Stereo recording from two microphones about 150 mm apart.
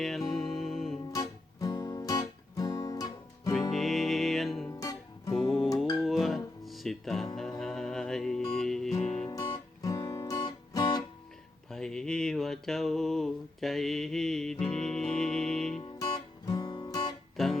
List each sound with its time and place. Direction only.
0.0 s music: centre (ahead or behind)
1.1 s music: 25° left (ahead or behind)
3.7 s music: centre (ahead or behind)
4.7 s music: 25° left (ahead or behind)
5.3 s music: centre (ahead or behind)
8.9 s music: 45° left (ahead or behind)
9.2 s music: 25° left (ahead or behind)
11.7 s a sound: 5° left (ahead or behind)
15.8 s guitar: 30° left (ahead or behind)
17.3 s music: centre (ahead or behind)